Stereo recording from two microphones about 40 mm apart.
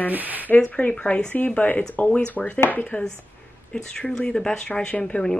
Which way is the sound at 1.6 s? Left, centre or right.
Left.